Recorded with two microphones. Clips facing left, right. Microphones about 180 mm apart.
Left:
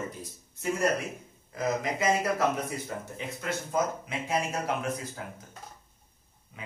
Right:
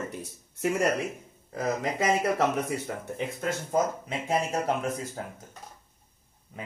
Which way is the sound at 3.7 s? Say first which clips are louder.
Right 2 dB; 40° right (ahead or behind).